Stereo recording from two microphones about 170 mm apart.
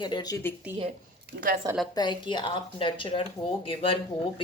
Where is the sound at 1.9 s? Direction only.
25° left (ahead or behind).